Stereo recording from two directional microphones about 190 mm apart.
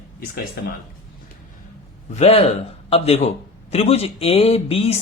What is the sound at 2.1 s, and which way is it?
A man's voice, 35° left (ahead or behind).